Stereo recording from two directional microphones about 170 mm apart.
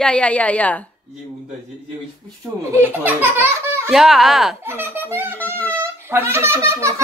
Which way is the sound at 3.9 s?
Centre (ahead or behind).